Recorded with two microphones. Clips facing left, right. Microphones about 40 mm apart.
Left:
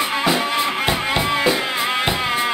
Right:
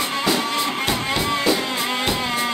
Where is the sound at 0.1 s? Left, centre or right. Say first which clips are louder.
Left 2 dB; centre.